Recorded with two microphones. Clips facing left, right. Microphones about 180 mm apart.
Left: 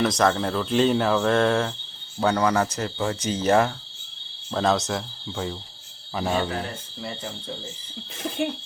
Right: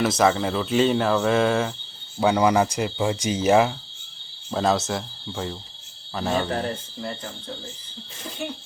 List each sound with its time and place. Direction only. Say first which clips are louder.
0.0 s speech: right 1 dB; 5° right (ahead or behind)
6.5 s speech: right 4 dB; 40° right (ahead or behind)